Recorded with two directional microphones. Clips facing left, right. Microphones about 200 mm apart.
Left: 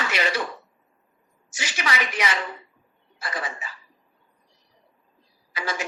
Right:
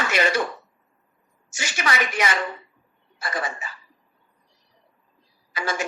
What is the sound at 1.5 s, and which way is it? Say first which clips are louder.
Speech: right 2 dB; 50° right (ahead or behind).